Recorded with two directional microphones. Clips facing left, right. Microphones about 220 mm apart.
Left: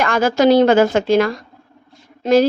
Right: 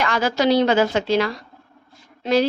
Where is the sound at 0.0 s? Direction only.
50° left (ahead or behind).